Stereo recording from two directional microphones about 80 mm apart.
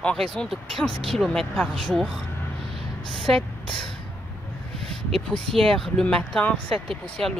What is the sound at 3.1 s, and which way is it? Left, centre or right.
Speech, centre.